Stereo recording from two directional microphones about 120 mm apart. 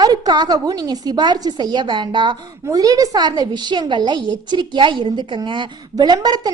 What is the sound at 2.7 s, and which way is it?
A woman's voice, 30° right (ahead or behind).